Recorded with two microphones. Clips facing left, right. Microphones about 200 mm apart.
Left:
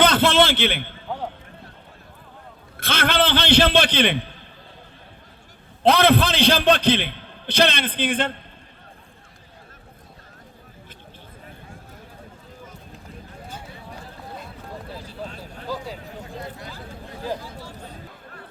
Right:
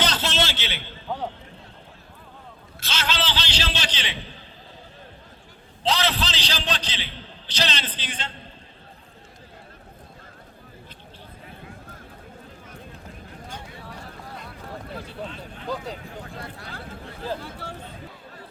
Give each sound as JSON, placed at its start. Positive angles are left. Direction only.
{"t": 0.0, "sound": "a man's voice", "side_deg": 55}
{"t": 2.7, "sound": "a man's voice", "side_deg": 55}
{"t": 5.8, "sound": "a man's voice", "side_deg": 55}
{"t": 17.4, "sound": "chatter", "side_deg": -65}